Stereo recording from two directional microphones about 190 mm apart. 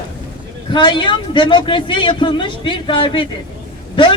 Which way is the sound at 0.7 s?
25° left (ahead or behind).